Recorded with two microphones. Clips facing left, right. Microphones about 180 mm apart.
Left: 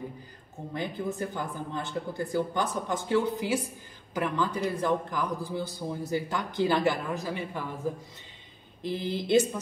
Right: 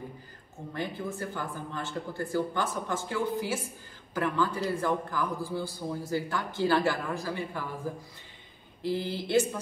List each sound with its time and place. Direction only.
0.7 s a woman's voice: 20° left (ahead or behind)